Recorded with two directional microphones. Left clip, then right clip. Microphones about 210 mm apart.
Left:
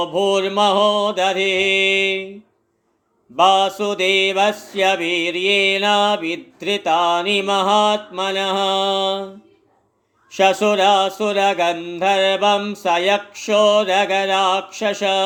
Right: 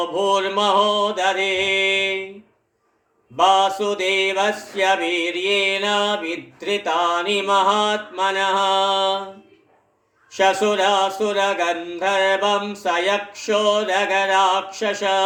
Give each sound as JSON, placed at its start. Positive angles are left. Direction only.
{"t": 0.1, "sound": "mantra", "side_deg": 50}
{"t": 3.3, "sound": "mantra", "side_deg": 50}
{"t": 10.3, "sound": "mantra", "side_deg": 50}